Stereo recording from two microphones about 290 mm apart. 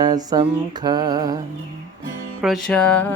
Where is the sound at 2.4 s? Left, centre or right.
Centre.